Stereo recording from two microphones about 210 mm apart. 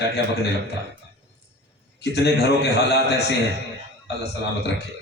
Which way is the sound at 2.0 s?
50° left (ahead or behind).